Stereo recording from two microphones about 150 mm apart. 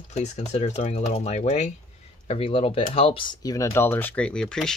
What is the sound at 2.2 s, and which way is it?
Speech, 40° left (ahead or behind).